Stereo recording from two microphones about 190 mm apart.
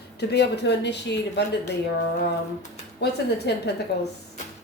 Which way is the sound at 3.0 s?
60° left (ahead or behind).